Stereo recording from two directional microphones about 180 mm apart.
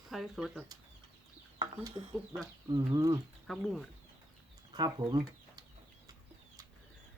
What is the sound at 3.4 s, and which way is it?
Speech, 5° left (ahead or behind).